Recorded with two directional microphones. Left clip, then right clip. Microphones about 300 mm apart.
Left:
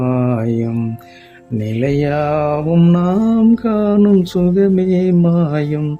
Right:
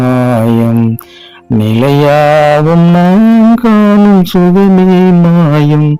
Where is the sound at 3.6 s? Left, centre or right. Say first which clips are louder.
Right 7 dB; right.